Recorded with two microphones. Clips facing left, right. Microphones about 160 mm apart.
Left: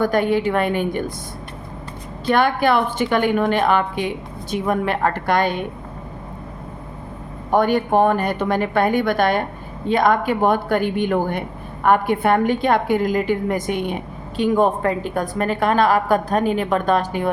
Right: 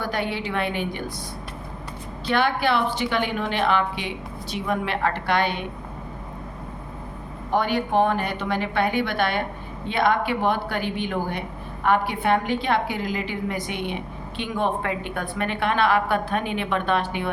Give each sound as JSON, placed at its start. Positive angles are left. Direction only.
{"t": 0.0, "sound": "speech", "side_deg": 50}
{"t": 2.2, "sound": "speech", "side_deg": 50}
{"t": 7.5, "sound": "speech", "side_deg": 50}